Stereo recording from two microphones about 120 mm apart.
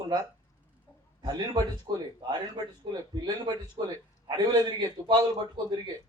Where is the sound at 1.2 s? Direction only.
35° right (ahead or behind).